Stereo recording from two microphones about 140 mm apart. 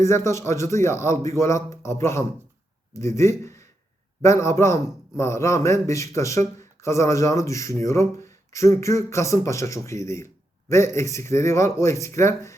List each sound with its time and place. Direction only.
0.0 s a man's voice: 20° left (ahead or behind)